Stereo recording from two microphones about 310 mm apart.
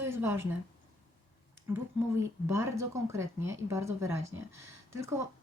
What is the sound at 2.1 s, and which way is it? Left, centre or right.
Speech, centre.